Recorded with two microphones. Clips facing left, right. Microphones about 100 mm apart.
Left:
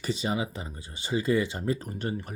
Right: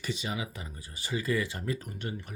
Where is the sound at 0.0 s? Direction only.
35° left (ahead or behind).